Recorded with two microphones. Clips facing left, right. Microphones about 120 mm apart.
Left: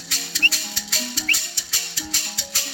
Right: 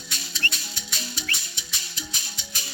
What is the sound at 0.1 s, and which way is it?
Music, 80° left.